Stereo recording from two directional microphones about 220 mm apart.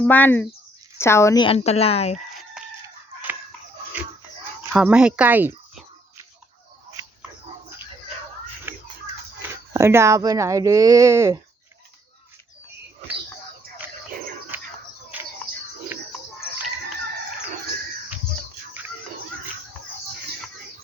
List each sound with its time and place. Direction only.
0.0 s speech: 10° left (ahead or behind); by 2.2 s 30° left (ahead or behind)
2.8 s chicken: 10° right (ahead or behind)
4.7 s speech: 5° right (ahead or behind)
8.7 s a sound: 10° right (ahead or behind)
9.7 s speech: 10° right (ahead or behind)
14.5 s a sound: 10° right (ahead or behind)
15.1 s bird: 5° right (ahead or behind)